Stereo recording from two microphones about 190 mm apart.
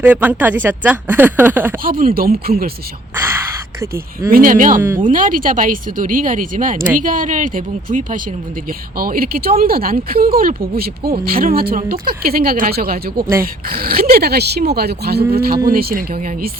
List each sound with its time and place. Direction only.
0.0 s speech: 10° right (ahead or behind)
1.8 s speech: 50° right (ahead or behind)
3.2 s gasp: 10° right (ahead or behind)
4.3 s speech: 50° right (ahead or behind)
14.7 s cattle: 55° right (ahead or behind)
15.7 s speech: 50° right (ahead or behind)